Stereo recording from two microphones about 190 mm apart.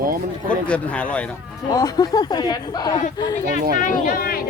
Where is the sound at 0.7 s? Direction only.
5° left (ahead or behind).